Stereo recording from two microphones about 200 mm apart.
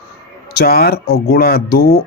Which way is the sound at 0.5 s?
50° left (ahead or behind).